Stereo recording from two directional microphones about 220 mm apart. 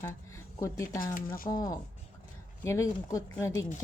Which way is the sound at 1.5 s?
15° left (ahead or behind).